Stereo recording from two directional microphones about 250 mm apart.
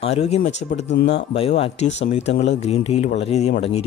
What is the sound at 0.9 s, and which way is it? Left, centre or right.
Speech, left.